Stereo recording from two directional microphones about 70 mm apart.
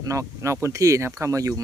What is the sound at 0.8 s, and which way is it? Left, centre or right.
Speech, right.